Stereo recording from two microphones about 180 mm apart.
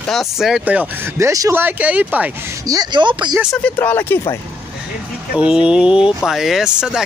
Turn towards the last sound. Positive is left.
turn(degrees=-5)  # may be behind; listen again after turning